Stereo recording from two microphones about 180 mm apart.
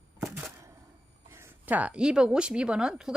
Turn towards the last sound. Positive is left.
turn(degrees=-5)  # may be behind; listen again after turning